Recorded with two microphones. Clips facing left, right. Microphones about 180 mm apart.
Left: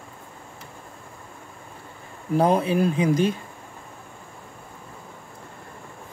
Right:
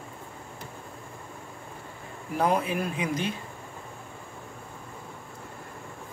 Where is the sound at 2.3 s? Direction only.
30° left (ahead or behind).